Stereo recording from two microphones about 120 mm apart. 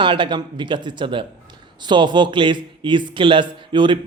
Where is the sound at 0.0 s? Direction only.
40° right (ahead or behind).